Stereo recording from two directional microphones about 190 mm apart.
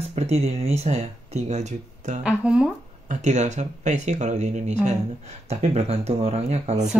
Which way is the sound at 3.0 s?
40° right (ahead or behind).